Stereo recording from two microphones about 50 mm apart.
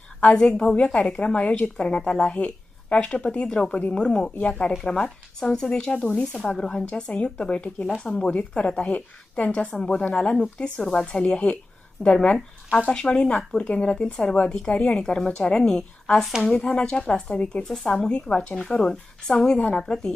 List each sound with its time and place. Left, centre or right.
0.3 s a woman's voice: centre
6.3 s a woman's voice: centre
7.9 s speech: centre
8.1 s a woman's voice: left
10.8 s speech: centre
11.0 s a woman's voice: centre
18.5 s speech: centre
19.5 s a woman's voice: left
19.8 s speech: centre